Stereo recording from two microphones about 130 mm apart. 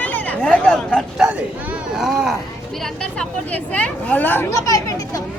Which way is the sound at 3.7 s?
10° left (ahead or behind).